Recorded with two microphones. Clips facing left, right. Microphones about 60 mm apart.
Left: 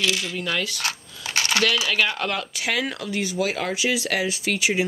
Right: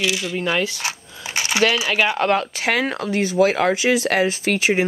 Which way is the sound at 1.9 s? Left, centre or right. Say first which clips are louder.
Right 5 dB; right.